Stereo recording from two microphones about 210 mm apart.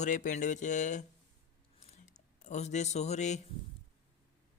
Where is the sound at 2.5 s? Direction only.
35° left (ahead or behind).